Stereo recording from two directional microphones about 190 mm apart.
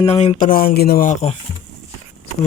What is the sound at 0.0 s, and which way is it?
Speech, 30° left (ahead or behind).